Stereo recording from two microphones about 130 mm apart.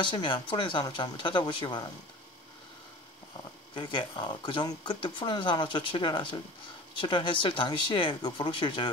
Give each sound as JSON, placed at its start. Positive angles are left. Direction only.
{"t": 0.0, "sound": "speech", "side_deg": 35}
{"t": 3.7, "sound": "speech", "side_deg": 35}